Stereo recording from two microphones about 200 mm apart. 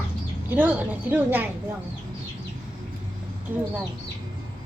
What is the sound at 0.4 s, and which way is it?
Speech, 10° right (ahead or behind).